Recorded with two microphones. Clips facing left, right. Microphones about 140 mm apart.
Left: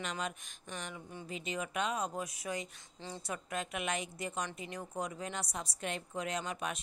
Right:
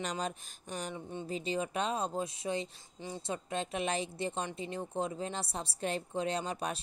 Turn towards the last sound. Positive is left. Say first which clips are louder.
# right 3 dB
turn(degrees=-35)  # may be behind; listen again after turning